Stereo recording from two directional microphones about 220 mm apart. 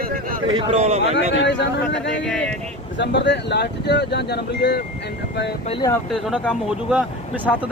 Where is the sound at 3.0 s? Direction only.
50° left (ahead or behind).